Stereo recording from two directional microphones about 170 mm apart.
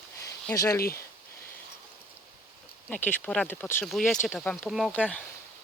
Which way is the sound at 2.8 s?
10° left (ahead or behind).